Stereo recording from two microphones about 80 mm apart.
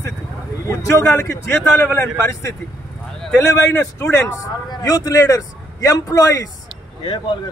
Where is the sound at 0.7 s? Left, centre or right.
Left.